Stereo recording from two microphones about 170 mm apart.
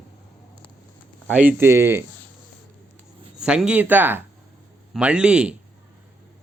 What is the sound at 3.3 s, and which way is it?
A man's voice, 5° right (ahead or behind).